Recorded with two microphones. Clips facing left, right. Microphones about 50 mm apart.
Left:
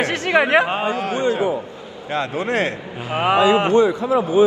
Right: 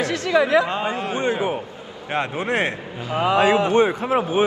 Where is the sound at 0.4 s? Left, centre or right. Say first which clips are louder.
Left 2 dB; left.